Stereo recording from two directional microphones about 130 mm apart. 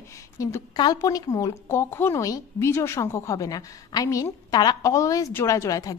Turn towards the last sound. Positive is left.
turn(degrees=25)  # may be behind; listen again after turning